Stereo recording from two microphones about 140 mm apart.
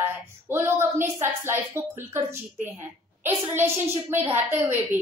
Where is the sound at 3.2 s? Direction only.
15° right (ahead or behind).